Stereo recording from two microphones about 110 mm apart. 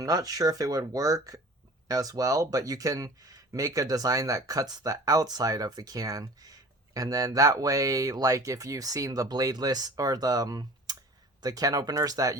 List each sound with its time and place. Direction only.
0.0 s speech: 35° right (ahead or behind)